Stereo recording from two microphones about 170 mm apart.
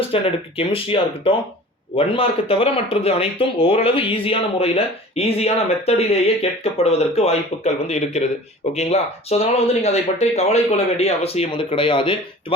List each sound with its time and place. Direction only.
0.1 s speech: 35° left (ahead or behind)